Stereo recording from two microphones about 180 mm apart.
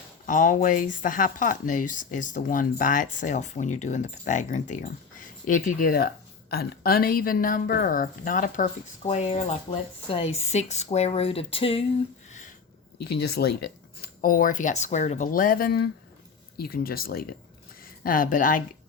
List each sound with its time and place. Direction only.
0.3 s speech: 45° left (ahead or behind)
12.3 s a sound: 45° left (ahead or behind)
13.1 s speech: 65° left (ahead or behind)
14.0 s speech: 50° left (ahead or behind)